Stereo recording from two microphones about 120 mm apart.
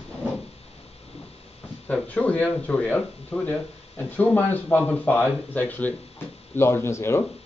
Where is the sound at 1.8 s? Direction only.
10° left (ahead or behind).